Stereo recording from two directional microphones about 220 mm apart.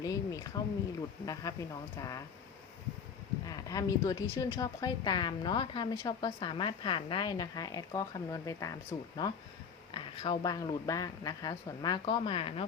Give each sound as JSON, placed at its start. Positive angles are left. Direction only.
{"t": 0.0, "sound": "a woman's voice", "side_deg": 15}
{"t": 3.5, "sound": "a woman's voice", "side_deg": 15}